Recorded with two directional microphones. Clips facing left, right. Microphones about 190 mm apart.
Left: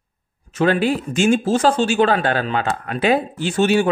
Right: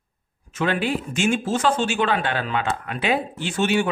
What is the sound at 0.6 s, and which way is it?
Speech, 40° left (ahead or behind).